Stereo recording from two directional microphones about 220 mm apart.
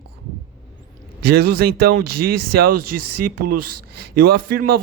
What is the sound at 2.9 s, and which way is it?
Speech, 90° right.